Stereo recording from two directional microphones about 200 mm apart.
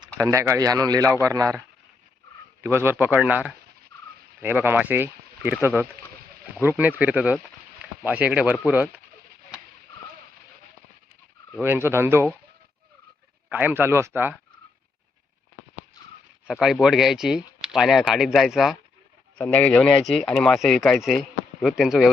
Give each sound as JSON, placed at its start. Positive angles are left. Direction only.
{"t": 0.0, "sound": "speech", "side_deg": -15}
{"t": 2.6, "sound": "speech", "side_deg": -10}
{"t": 11.6, "sound": "speech", "side_deg": -10}
{"t": 13.5, "sound": "speech", "side_deg": -10}
{"t": 16.5, "sound": "speech", "side_deg": 0}